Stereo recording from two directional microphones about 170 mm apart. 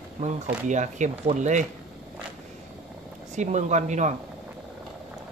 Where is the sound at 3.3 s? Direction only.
45° right (ahead or behind).